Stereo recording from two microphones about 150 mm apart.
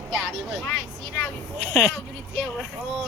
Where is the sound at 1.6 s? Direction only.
15° left (ahead or behind).